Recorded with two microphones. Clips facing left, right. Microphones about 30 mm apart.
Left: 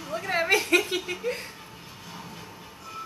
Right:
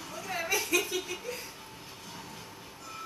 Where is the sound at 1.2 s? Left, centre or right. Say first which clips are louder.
Left 8 dB; left.